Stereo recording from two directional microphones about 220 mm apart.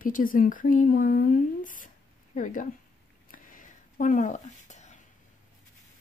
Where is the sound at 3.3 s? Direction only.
40° left (ahead or behind).